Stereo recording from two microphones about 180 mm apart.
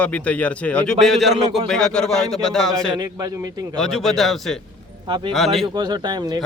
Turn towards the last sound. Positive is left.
turn(degrees=-25)  # may be behind; listen again after turning